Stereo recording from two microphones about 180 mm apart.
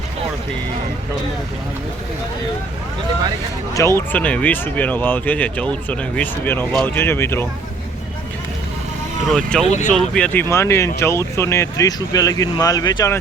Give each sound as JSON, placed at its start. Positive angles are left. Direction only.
{"t": 3.8, "sound": "speech", "side_deg": 15}
{"t": 9.3, "sound": "speech", "side_deg": 5}
{"t": 9.6, "sound": "speech", "side_deg": 40}
{"t": 9.9, "sound": "speech", "side_deg": 5}